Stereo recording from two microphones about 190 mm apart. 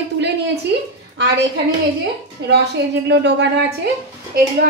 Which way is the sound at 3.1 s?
65° right (ahead or behind).